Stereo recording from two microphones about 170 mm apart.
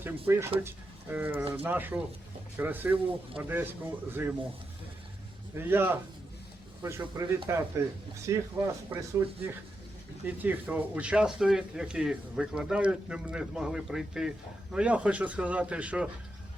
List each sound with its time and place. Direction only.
0.0 s speech: 15° right (ahead or behind)
5.5 s speech: 10° right (ahead or behind)
10.2 s speech: 10° right (ahead or behind)